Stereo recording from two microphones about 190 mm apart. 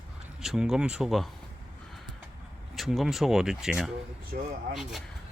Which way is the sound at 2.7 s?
Centre (ahead or behind).